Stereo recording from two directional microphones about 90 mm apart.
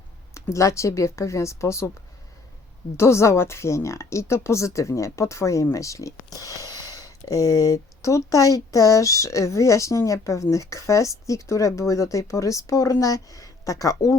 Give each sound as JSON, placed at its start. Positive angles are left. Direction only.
{"t": 0.3, "sound": "speech", "side_deg": 35}
{"t": 3.0, "sound": "speech", "side_deg": 30}